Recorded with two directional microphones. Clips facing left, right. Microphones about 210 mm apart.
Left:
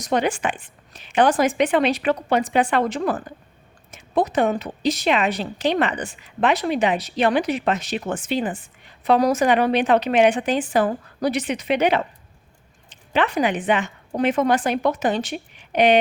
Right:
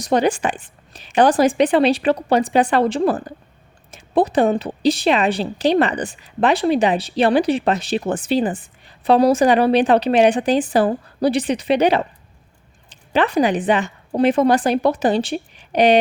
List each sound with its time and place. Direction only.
0.0 s a woman's voice: 35° right (ahead or behind)